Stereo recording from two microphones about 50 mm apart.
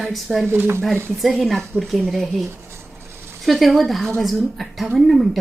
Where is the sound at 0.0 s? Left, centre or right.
Centre.